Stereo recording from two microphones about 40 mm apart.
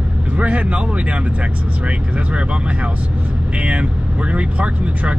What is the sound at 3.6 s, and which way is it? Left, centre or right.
Speech, right.